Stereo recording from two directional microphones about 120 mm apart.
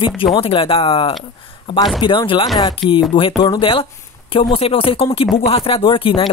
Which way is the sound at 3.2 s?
45° left (ahead or behind).